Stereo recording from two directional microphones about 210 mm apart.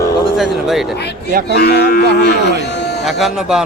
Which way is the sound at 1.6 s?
50° left (ahead or behind).